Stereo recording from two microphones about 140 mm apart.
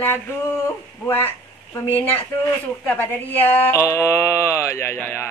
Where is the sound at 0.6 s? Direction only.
15° left (ahead or behind).